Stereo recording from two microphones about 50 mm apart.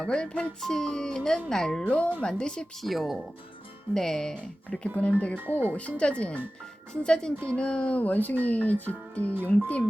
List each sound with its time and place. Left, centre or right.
0.0 s speech: centre
1.8 s speech: left
2.8 s speech: centre
3.9 s speech: centre
4.8 s speech: left
5.4 s speech: right
5.7 s speech: left